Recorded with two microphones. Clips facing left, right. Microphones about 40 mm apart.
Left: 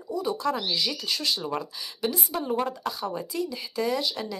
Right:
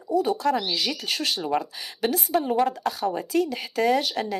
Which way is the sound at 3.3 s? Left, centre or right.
Right.